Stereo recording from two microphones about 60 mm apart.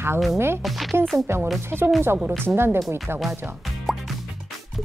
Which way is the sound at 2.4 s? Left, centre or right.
Right.